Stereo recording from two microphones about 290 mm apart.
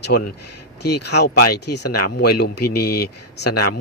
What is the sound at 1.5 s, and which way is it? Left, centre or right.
Speech, left.